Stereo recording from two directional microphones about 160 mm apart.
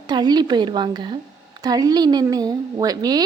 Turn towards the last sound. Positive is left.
turn(degrees=-25)  # may be behind; listen again after turning